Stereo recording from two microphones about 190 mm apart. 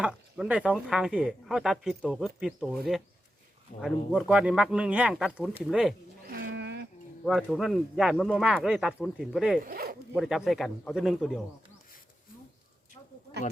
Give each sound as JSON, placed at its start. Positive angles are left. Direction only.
{"t": 0.0, "sound": "speech", "side_deg": -5}
{"t": 6.2, "sound": "a sound", "side_deg": -50}
{"t": 7.3, "sound": "speech", "side_deg": 0}
{"t": 9.6, "sound": "speech", "side_deg": -50}
{"t": 10.2, "sound": "speech", "side_deg": 0}